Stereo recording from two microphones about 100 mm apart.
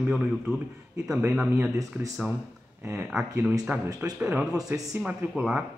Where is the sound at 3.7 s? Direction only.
15° right (ahead or behind).